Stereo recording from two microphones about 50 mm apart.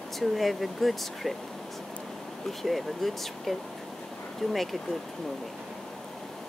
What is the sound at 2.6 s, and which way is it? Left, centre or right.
Speech, centre.